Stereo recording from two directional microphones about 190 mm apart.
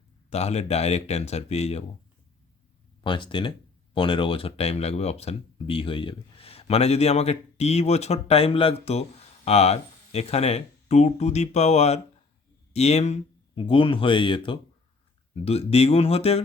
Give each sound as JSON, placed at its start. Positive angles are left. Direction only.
{"t": 0.3, "sound": "speech", "side_deg": 35}
{"t": 3.0, "sound": "speech", "side_deg": 25}